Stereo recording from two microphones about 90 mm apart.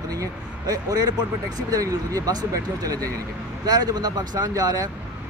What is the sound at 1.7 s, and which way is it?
Speech, 40° right (ahead or behind).